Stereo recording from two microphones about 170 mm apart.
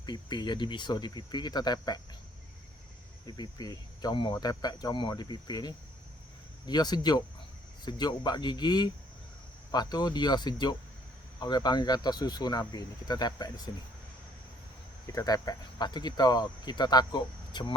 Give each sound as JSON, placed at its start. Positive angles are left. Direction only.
{"t": 0.0, "sound": "speech", "side_deg": 25}
{"t": 3.2, "sound": "speech", "side_deg": 25}
{"t": 15.0, "sound": "speech", "side_deg": 20}